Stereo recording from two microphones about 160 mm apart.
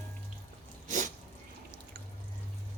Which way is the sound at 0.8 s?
50° right (ahead or behind).